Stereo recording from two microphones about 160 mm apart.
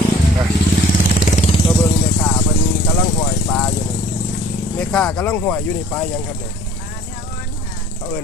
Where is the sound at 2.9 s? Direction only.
10° left (ahead or behind).